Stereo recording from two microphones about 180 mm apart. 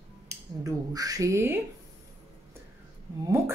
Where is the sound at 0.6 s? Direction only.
20° right (ahead or behind).